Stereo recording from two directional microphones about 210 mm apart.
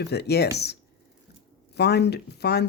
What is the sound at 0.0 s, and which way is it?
Speech, 50° left (ahead or behind).